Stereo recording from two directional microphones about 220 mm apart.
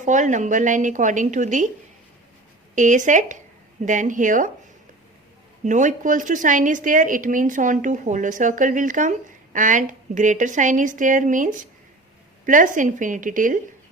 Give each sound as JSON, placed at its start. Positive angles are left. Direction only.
{"t": 0.0, "sound": "a woman's voice", "side_deg": -35}
{"t": 2.7, "sound": "speech", "side_deg": -35}
{"t": 5.6, "sound": "a woman's voice", "side_deg": -35}